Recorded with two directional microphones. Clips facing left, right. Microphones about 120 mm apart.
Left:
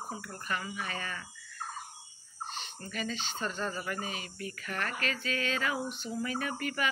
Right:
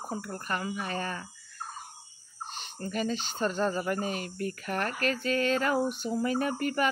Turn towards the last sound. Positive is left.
turn(degrees=-45)  # may be behind; listen again after turning